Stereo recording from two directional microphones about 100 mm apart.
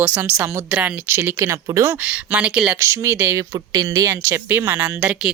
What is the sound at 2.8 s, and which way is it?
A woman's voice, 30° right (ahead or behind).